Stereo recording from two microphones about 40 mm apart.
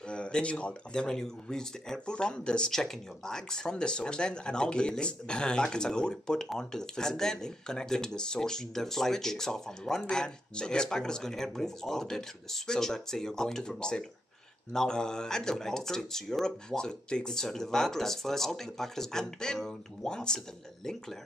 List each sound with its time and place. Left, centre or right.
0.1 s speech: left
0.9 s speech: centre
2.7 s speech: centre
20.3 s speech: centre